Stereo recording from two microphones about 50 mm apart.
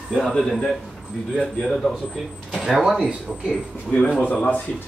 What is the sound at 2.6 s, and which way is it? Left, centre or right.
Speech, centre.